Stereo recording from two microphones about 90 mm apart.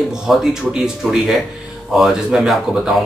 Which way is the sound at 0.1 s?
5° right (ahead or behind).